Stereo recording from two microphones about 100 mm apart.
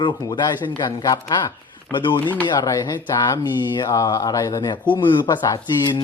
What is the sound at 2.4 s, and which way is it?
Speech, 40° left (ahead or behind).